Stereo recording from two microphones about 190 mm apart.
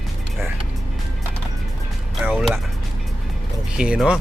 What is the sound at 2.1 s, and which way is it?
Speech, centre (ahead or behind).